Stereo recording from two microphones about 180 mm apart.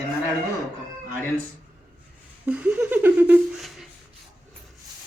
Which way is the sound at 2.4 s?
5° right (ahead or behind).